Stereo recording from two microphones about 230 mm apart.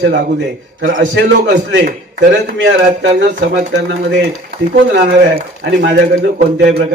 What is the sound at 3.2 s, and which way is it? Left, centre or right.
A man's voice, right.